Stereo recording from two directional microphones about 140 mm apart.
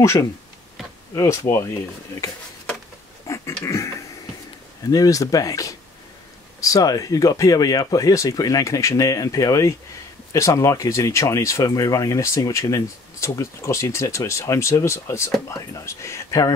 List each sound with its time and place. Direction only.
0.0 s speech: 20° left (ahead or behind)
3.3 s a sound: 20° left (ahead or behind)
4.9 s speech: 25° left (ahead or behind)